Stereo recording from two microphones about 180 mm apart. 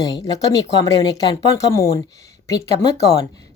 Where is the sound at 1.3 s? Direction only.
15° left (ahead or behind).